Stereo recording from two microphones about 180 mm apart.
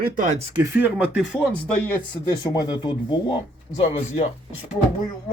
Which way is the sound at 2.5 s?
25° left (ahead or behind).